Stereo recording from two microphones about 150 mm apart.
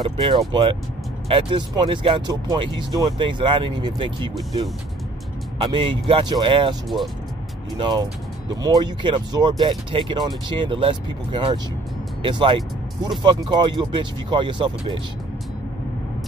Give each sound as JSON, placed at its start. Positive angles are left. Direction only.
{"t": 0.0, "sound": "speech", "side_deg": -35}